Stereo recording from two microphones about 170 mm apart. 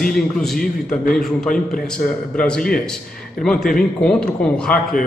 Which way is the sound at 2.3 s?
5° left (ahead or behind).